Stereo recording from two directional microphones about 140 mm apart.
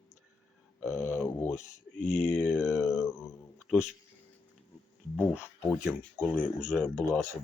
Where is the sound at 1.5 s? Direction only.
60° left (ahead or behind).